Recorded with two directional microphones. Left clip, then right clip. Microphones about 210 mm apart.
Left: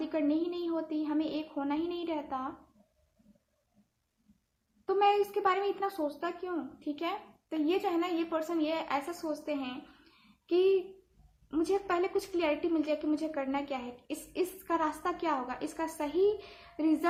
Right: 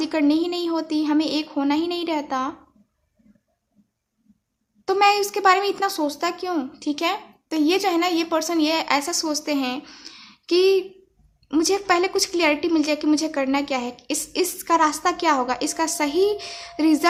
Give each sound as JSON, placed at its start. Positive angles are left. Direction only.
{"t": 0.0, "sound": "a woman's voice", "side_deg": -40}
{"t": 4.9, "sound": "a woman's voice", "side_deg": -40}